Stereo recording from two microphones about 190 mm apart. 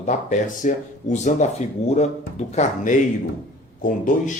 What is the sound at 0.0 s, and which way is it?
Speech, 40° left (ahead or behind).